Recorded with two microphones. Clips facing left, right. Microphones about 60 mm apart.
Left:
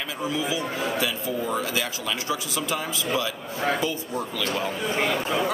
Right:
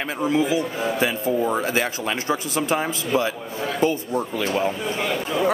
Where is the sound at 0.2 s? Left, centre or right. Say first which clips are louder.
Right 7 dB; right.